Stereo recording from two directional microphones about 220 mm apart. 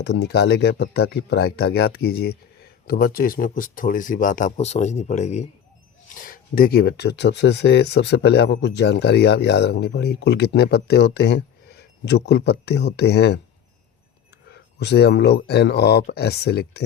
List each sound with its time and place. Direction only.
0.0 s speech: 50° left (ahead or behind)
14.5 s speech: 50° left (ahead or behind)